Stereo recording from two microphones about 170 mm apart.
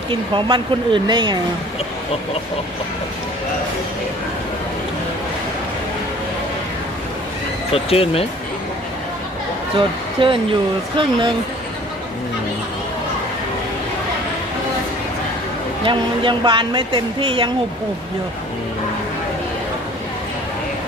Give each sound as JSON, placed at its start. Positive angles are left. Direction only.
{"t": 0.1, "sound": "a woman's voice", "side_deg": -30}
{"t": 7.7, "sound": "speech", "side_deg": 35}
{"t": 9.7, "sound": "a woman's voice", "side_deg": -30}
{"t": 15.8, "sound": "a woman's voice", "side_deg": -30}